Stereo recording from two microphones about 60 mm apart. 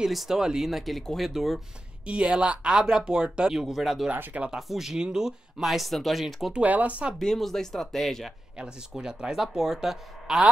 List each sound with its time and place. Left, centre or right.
0.0 s speech: centre
2.0 s speech: centre
4.1 s speech: right
4.5 s speech: centre
6.5 s speech: right
7.2 s speech: centre
8.5 s speech: centre